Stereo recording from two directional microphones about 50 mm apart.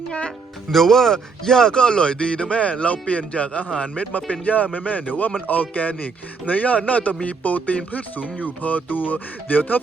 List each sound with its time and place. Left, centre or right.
0.7 s speech: centre; by 9.8 s left